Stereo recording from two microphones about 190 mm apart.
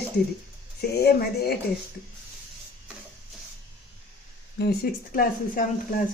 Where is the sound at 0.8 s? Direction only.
55° left (ahead or behind).